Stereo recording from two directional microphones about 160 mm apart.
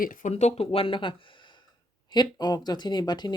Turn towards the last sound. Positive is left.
turn(degrees=25)  # may be behind; listen again after turning